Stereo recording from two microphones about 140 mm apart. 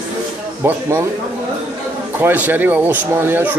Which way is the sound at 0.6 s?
20° right (ahead or behind).